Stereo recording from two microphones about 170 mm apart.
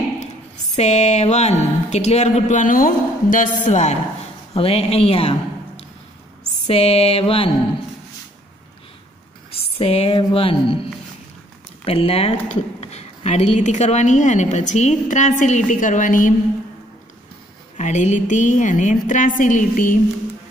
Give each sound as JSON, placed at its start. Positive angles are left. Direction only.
{"t": 0.7, "sound": "speech", "side_deg": 40}
{"t": 6.7, "sound": "speech", "side_deg": 35}
{"t": 9.5, "sound": "speech", "side_deg": 35}
{"t": 11.8, "sound": "speech", "side_deg": 35}
{"t": 17.7, "sound": "speech", "side_deg": 45}